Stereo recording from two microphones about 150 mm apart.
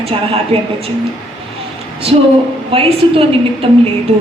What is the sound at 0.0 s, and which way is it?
Speech, 40° right (ahead or behind).